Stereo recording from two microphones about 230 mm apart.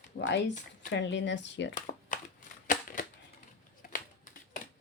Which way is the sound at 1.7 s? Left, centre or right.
Left.